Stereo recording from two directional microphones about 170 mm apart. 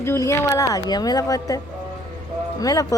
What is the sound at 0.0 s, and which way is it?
Speech, 15° left (ahead or behind).